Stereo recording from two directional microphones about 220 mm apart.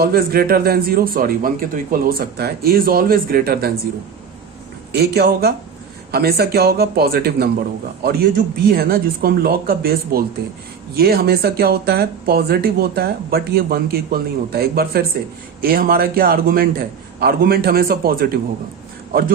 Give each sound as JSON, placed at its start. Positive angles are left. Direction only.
{"t": 0.0, "sound": "speech", "side_deg": -45}
{"t": 4.9, "sound": "speech", "side_deg": -45}